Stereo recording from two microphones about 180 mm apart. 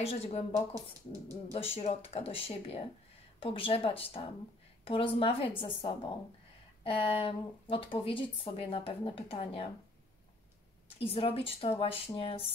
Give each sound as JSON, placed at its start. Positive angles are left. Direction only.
{"t": 0.0, "sound": "a woman's voice", "side_deg": 35}
{"t": 11.0, "sound": "a woman's voice", "side_deg": 30}